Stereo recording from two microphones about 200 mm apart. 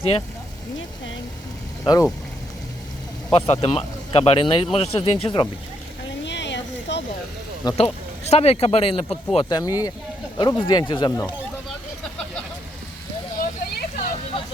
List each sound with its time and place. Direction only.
1.8 s speech: 15° left (ahead or behind)
3.3 s speech: 30° left (ahead or behind)
6.2 s a sound: 60° left (ahead or behind)
7.6 s speech: 20° left (ahead or behind)
8.2 s speech: 30° left (ahead or behind)
13.4 s a sound: 45° left (ahead or behind)